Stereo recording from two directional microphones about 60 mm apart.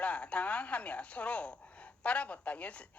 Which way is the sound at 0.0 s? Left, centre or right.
Left.